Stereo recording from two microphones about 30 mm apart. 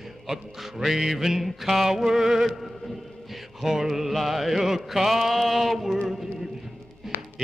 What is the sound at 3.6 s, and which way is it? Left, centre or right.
Mantra, centre.